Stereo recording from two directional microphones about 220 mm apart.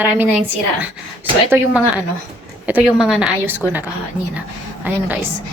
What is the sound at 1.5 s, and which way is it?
A woman's voice, 10° right (ahead or behind).